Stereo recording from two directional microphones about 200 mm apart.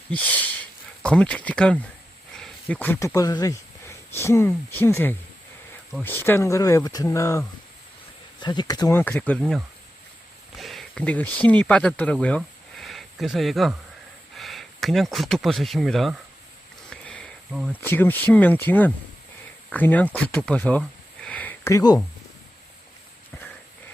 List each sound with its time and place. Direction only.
0.1 s speech: 10° left (ahead or behind)
16.9 s a sound: 5° left (ahead or behind)
17.8 s speech: 10° left (ahead or behind)